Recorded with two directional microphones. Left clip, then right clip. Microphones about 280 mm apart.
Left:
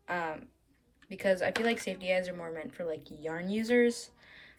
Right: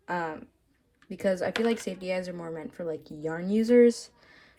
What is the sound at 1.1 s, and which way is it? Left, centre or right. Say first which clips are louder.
A woman's voice: right 1 dB; centre.